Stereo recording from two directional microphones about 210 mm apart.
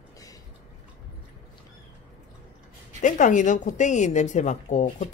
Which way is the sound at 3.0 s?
35° left (ahead or behind).